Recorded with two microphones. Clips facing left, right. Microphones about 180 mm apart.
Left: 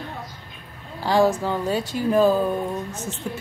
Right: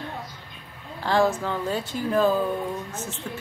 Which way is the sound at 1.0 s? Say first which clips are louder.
Left 3 dB; 10° left (ahead or behind).